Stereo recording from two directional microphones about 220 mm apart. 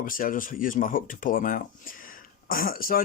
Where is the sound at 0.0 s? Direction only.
40° left (ahead or behind).